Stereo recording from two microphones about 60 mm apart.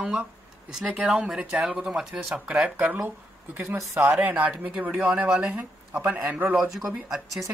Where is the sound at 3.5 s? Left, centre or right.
Right.